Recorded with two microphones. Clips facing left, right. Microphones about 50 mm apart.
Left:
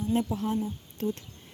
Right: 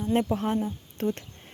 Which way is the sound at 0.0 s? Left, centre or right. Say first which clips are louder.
Right 3 dB; right.